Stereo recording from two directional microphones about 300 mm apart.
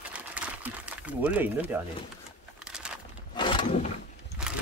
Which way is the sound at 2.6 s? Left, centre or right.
Centre.